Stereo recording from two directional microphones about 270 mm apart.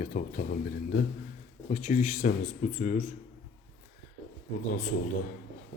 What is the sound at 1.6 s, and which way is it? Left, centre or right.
Speech, left.